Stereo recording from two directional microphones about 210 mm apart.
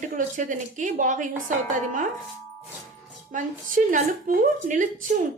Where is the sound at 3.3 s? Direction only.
40° right (ahead or behind).